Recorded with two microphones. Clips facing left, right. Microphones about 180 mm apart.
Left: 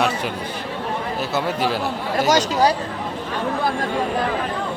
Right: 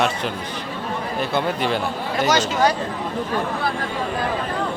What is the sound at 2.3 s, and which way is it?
Speech, 40° left (ahead or behind).